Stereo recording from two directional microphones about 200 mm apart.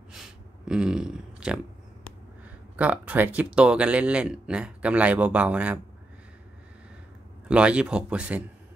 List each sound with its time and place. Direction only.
0.1 s a sound: 5° right (ahead or behind)
2.7 s speech: 5° right (ahead or behind)
7.4 s speech: 5° right (ahead or behind)